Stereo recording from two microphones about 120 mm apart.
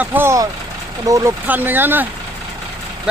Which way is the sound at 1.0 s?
30° right (ahead or behind).